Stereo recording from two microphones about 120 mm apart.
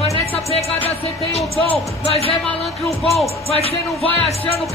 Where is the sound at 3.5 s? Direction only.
55° right (ahead or behind).